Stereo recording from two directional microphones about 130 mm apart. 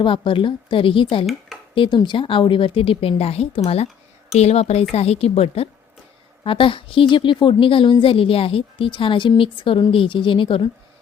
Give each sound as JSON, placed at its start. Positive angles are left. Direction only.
{"t": 0.0, "sound": "a woman's voice", "side_deg": 40}